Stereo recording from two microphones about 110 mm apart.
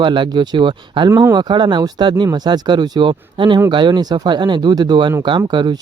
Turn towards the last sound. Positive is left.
turn(degrees=-45)  # may be behind; listen again after turning